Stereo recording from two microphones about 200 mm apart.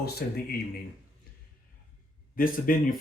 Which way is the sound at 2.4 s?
45° left (ahead or behind).